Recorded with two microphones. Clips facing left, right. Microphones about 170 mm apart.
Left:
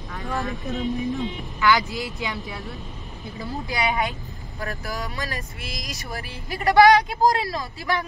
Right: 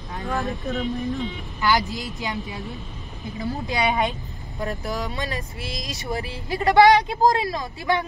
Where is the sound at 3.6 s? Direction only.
20° right (ahead or behind).